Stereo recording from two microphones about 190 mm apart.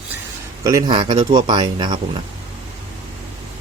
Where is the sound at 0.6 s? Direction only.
20° right (ahead or behind).